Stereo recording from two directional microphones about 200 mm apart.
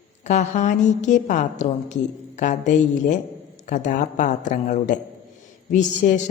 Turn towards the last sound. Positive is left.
turn(degrees=40)  # may be behind; listen again after turning